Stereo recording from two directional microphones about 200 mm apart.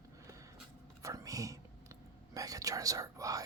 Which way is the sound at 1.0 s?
15° right (ahead or behind).